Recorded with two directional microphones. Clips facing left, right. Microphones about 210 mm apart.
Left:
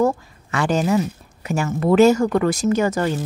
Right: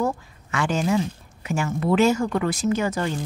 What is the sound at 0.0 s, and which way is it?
Speech, 35° left (ahead or behind).